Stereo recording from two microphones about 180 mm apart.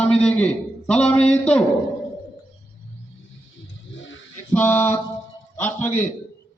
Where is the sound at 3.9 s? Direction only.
90° left.